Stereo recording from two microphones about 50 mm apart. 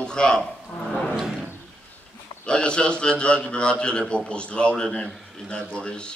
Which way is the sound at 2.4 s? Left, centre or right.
Centre.